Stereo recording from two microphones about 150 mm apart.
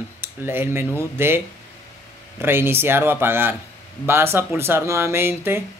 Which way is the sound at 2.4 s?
15° right (ahead or behind).